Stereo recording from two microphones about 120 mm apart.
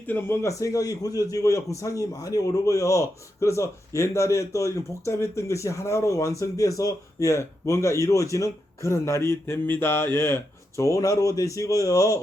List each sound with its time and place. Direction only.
0.1 s a man's voice: 20° left (ahead or behind)